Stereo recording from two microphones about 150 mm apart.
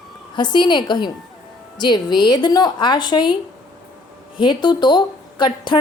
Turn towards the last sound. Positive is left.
turn(degrees=30)  # may be behind; listen again after turning